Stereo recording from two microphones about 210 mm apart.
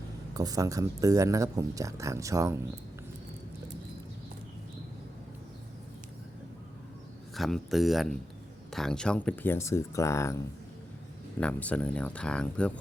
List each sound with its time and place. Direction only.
0.3 s speech: 15° right (ahead or behind)
7.3 s speech: centre (ahead or behind)
11.3 s speech: 5° left (ahead or behind)